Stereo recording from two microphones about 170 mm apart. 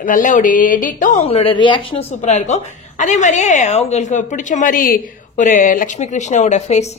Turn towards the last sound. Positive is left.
turn(degrees=40)  # may be behind; listen again after turning